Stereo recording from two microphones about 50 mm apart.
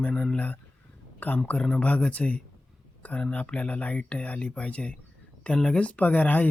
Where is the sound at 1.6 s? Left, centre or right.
Left.